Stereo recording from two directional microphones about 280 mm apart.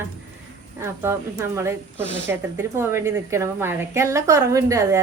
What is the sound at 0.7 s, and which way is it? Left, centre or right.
Speech, centre.